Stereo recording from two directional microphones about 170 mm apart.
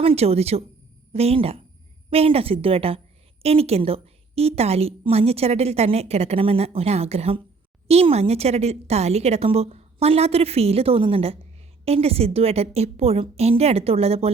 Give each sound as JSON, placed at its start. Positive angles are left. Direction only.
{"t": 0.0, "sound": "a woman's voice", "side_deg": -35}